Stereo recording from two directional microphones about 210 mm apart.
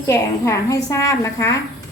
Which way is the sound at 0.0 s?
15° left (ahead or behind).